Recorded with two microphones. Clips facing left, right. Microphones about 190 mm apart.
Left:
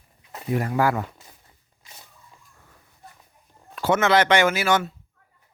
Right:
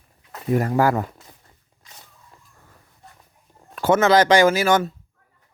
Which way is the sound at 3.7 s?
45° right (ahead or behind).